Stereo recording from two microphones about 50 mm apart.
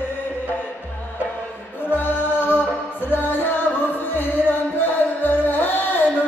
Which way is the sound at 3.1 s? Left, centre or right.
Left.